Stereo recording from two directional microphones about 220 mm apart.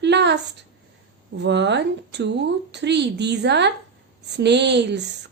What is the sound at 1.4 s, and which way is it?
A woman's voice, 50° right (ahead or behind).